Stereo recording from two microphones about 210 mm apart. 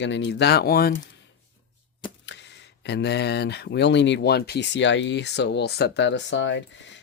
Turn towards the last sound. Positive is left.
turn(degrees=60)  # may be behind; listen again after turning